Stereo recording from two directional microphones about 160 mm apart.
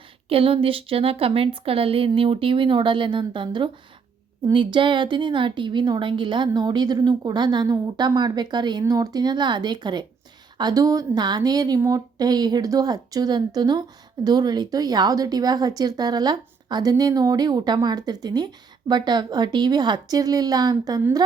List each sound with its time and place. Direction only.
0.3 s speech: 35° right (ahead or behind)